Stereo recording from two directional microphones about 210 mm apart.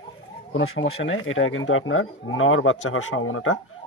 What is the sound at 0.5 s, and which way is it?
Speech, 75° left (ahead or behind).